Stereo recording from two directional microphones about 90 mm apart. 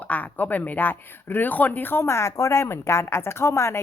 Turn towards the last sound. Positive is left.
turn(degrees=30)  # may be behind; listen again after turning